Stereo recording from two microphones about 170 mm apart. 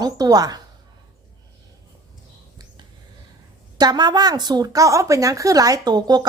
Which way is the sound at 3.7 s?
25° right (ahead or behind).